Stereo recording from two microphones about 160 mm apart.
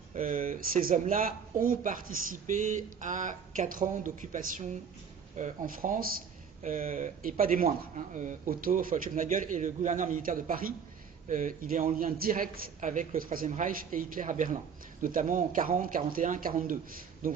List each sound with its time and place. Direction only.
0.1 s speech: 55° right (ahead or behind)